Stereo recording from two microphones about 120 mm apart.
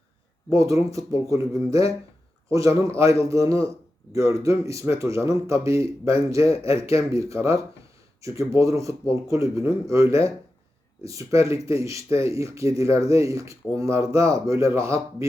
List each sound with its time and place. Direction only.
0.6 s speech: 25° right (ahead or behind)
8.5 s speech: 25° right (ahead or behind)